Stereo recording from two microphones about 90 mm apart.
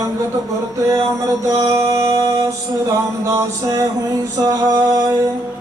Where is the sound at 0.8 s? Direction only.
35° right (ahead or behind).